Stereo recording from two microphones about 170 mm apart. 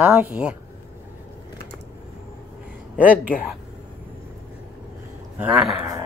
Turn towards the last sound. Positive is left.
turn(degrees=-5)  # may be behind; listen again after turning